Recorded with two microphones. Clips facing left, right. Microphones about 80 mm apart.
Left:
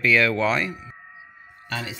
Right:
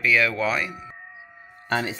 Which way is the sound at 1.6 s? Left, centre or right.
Right.